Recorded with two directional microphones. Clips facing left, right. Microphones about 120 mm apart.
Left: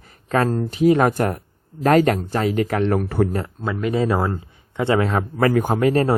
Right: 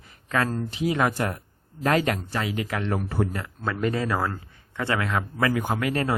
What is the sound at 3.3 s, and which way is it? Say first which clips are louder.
Speech: left 8 dB; 40° left (ahead or behind).